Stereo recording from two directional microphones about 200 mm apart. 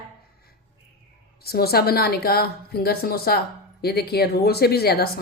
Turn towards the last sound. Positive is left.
turn(degrees=50)  # may be behind; listen again after turning